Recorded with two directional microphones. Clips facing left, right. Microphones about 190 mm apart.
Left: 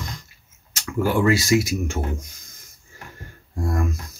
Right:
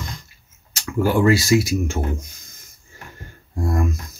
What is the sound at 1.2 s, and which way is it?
Speech, 30° right (ahead or behind).